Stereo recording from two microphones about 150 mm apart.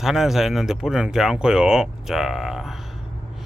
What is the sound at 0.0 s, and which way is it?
Speech, centre (ahead or behind).